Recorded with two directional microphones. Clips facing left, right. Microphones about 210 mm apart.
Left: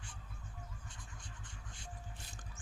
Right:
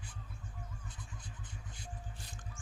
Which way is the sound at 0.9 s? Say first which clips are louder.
Right 4 dB; 5° right (ahead or behind).